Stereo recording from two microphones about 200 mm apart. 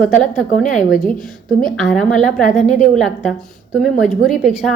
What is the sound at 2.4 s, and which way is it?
Speech, 40° left (ahead or behind).